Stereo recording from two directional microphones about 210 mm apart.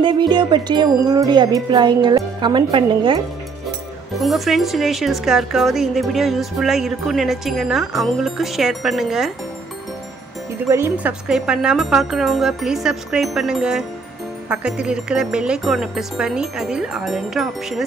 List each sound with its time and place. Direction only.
0.0 s wind chime: 20° right (ahead or behind)
4.2 s speech: centre (ahead or behind)
10.7 s speech: 10° right (ahead or behind)